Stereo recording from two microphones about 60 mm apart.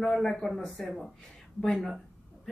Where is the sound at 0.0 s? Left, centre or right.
Centre.